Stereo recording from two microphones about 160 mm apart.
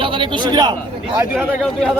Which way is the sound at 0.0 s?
30° right (ahead or behind).